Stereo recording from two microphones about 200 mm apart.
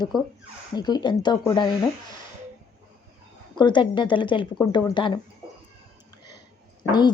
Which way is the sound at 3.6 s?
25° left (ahead or behind).